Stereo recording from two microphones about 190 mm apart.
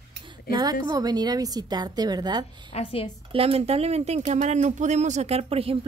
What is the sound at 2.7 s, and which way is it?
Speech, 30° left (ahead or behind).